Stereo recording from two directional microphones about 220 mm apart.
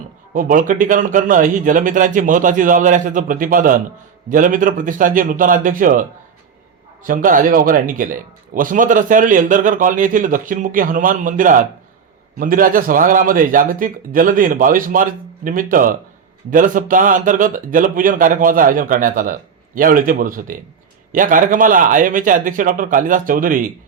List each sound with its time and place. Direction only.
0.3 s speech: 35° right (ahead or behind)